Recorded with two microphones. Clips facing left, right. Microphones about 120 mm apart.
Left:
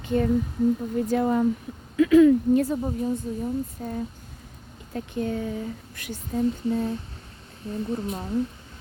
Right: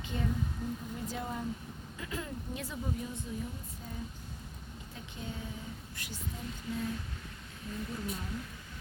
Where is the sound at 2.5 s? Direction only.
50° left (ahead or behind).